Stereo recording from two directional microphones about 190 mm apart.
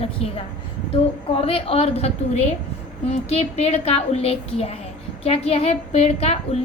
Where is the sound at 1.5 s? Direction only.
30° left (ahead or behind).